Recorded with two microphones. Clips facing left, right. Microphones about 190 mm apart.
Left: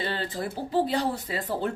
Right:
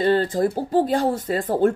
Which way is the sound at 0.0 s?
45° right (ahead or behind).